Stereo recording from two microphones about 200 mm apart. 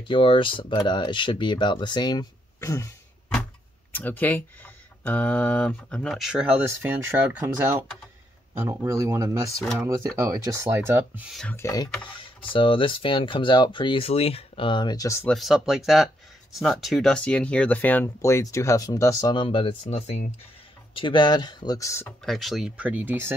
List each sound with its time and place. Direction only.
0.0 s speech: 25° left (ahead or behind)
3.9 s speech: 10° left (ahead or behind)
6.8 s speech: 10° right (ahead or behind)
8.6 s speech: 15° right (ahead or behind)
11.3 s speech: 10° left (ahead or behind)
15.3 s speech: centre (ahead or behind); by 20.3 s 35° left (ahead or behind)
20.9 s speech: 25° left (ahead or behind)
22.2 s speech: centre (ahead or behind)